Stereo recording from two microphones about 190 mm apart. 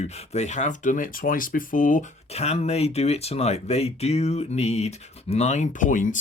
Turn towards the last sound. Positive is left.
turn(degrees=45)  # may be behind; listen again after turning